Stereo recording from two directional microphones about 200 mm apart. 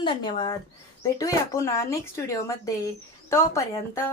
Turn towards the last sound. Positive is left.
turn(degrees=15)  # may be behind; listen again after turning